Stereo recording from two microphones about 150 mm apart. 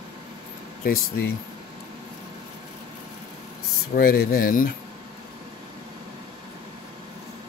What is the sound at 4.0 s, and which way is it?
Speech, 90° left.